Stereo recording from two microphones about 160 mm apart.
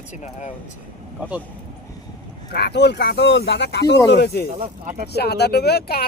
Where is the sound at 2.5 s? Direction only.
90° left.